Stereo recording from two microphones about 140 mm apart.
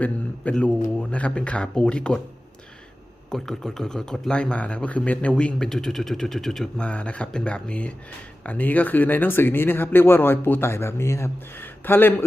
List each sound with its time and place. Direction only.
0.0 s speech: 10° left (ahead or behind)
3.2 s speech: 5° left (ahead or behind)